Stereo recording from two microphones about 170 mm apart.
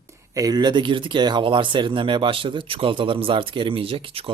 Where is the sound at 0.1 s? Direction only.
20° right (ahead or behind).